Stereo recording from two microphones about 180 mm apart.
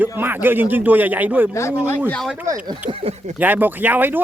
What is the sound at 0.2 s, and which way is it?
Speech, 10° right (ahead or behind).